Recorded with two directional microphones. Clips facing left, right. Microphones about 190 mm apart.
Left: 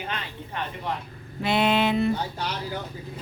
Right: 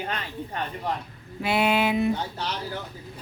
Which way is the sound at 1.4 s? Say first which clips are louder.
Left 1 dB; 10° right (ahead or behind).